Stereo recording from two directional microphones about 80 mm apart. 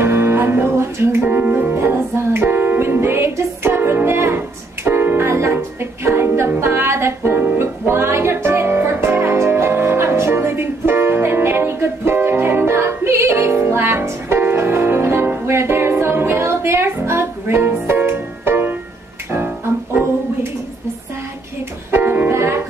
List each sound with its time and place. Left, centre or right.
0.0 s music: right
21.9 s music: right